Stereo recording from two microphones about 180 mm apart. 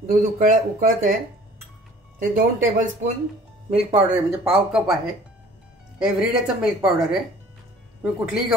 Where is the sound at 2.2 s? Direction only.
45° right (ahead or behind).